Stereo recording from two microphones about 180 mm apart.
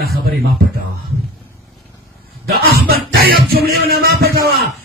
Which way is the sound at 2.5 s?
60° right (ahead or behind).